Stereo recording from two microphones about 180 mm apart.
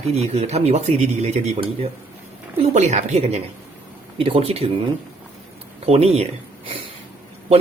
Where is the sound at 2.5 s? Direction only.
35° right (ahead or behind).